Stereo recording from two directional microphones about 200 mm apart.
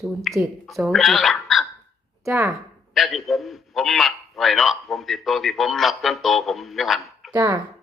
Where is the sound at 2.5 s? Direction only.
Centre (ahead or behind).